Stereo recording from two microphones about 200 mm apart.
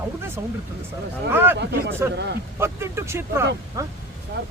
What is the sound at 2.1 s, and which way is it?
Speech, 60° right (ahead or behind).